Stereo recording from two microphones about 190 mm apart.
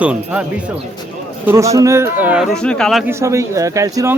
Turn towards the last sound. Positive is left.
turn(degrees=-15)  # may be behind; listen again after turning